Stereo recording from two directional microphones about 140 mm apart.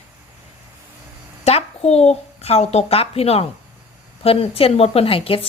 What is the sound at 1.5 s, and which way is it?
A child's voice, 50° left (ahead or behind).